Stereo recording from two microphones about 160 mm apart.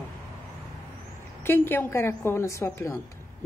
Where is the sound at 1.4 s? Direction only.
15° left (ahead or behind).